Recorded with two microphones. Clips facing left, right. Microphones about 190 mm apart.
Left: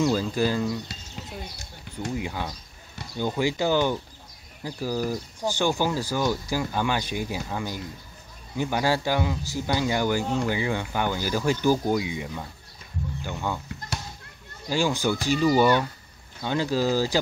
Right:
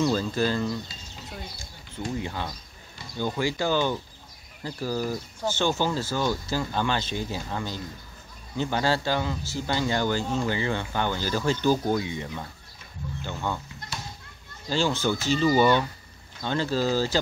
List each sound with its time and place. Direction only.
0.0 s speech: 10° left (ahead or behind)
2.1 s speech: 10° left (ahead or behind)
14.7 s speech: 15° left (ahead or behind)